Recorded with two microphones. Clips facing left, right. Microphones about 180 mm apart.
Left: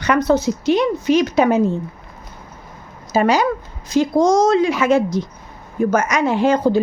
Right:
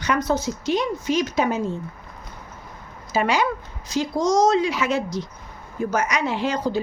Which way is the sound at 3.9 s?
55° left (ahead or behind).